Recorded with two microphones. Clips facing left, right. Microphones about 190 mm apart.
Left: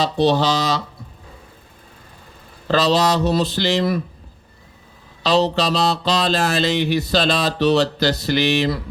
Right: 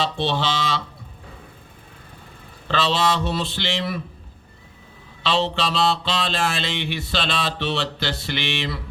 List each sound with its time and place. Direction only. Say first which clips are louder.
0.0 s mantra: left 6 dB; 40° left (ahead or behind)
2.6 s mantra: left 5 dB; 40° left (ahead or behind)
5.2 s mantra: left 5 dB; 40° left (ahead or behind)